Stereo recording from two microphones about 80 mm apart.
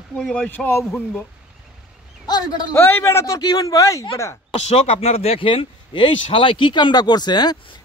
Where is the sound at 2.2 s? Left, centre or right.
Left.